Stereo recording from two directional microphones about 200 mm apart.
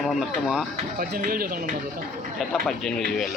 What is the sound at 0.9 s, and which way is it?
Speech, 45° right (ahead or behind).